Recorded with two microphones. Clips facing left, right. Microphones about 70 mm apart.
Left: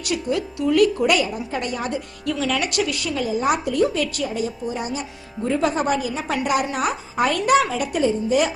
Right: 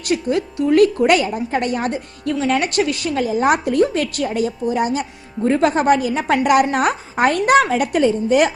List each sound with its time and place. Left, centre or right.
0.0 s a woman's voice: right
2.3 s a woman's voice: right
5.5 s a woman's voice: right